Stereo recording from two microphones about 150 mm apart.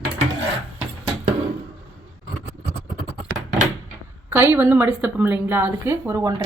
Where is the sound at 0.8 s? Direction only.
45° right (ahead or behind).